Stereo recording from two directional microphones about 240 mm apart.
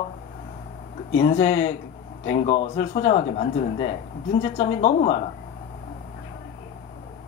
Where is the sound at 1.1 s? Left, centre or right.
Left.